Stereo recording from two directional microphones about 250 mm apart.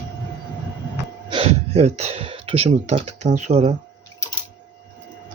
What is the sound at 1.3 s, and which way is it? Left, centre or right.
Computer keyboard, right.